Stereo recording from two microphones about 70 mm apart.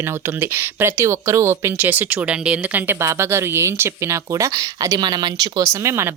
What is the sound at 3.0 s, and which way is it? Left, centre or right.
Speech, right.